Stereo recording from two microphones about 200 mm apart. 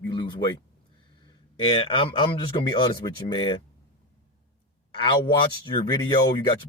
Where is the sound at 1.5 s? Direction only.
25° left (ahead or behind).